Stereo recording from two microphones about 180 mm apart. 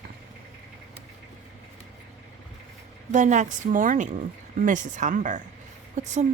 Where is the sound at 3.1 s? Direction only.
45° right (ahead or behind).